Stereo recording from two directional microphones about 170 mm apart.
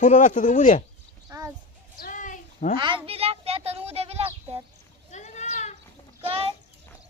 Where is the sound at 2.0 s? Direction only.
50° left (ahead or behind).